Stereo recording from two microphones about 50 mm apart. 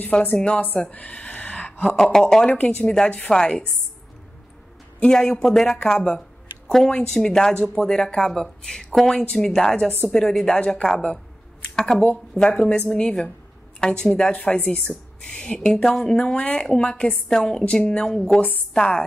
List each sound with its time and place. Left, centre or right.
0.0 s a woman's voice: left
0.9 s a sound: left
1.9 s speech: centre
2.5 s a woman's voice: left
3.3 s speech: centre
5.0 s speech: centre
11.7 s a sound: centre
12.4 s a woman's voice: centre
18.1 s speech: centre